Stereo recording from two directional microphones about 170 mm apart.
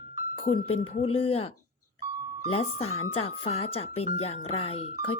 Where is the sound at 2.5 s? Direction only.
35° left (ahead or behind).